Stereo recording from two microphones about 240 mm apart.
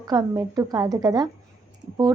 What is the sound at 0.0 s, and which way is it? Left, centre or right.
Speech, centre.